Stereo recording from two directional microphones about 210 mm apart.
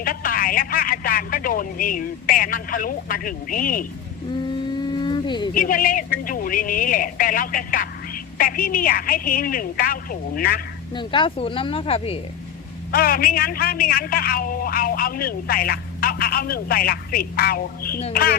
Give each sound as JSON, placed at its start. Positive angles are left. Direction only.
{"t": 0.0, "sound": "a woman's voice", "side_deg": 40}
{"t": 4.8, "sound": "vehicle", "side_deg": 20}
{"t": 5.5, "sound": "a woman's voice", "side_deg": 40}
{"t": 10.9, "sound": "speech", "side_deg": 25}
{"t": 12.9, "sound": "a man's voice", "side_deg": 45}